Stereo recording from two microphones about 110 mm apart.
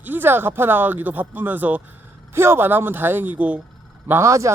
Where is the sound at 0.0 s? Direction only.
15° right (ahead or behind).